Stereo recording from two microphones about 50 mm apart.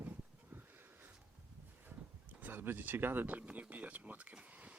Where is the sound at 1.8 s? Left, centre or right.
Right.